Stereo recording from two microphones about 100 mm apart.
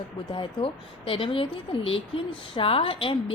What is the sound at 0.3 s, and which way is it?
A woman's voice, 60° left (ahead or behind).